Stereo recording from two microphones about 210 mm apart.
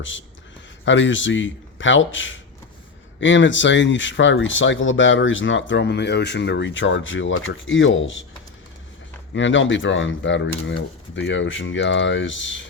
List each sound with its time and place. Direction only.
0.0 s speech: 65° left (ahead or behind)
9.3 s speech: 65° left (ahead or behind)